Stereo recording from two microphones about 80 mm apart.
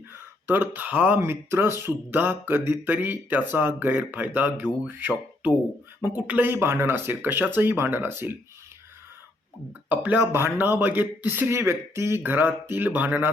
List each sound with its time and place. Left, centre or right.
0.1 s speech: right
1.2 s speech: right
9.9 s speech: right